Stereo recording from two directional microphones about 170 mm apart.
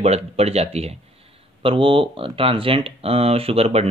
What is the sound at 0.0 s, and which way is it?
Speech, 35° right (ahead or behind).